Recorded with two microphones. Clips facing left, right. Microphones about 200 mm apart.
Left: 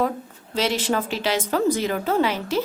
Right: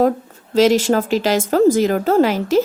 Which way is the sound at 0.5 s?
45° right (ahead or behind).